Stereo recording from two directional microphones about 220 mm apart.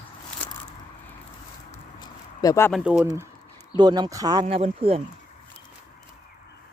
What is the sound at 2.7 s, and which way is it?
Speech, 5° right (ahead or behind).